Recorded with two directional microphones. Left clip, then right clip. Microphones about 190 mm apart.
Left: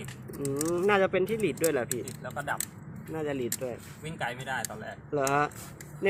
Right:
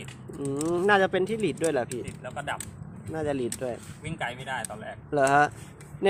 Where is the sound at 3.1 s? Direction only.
20° right (ahead or behind).